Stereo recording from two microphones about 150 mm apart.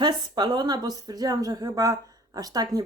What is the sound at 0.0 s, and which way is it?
A woman's voice, 30° right (ahead or behind).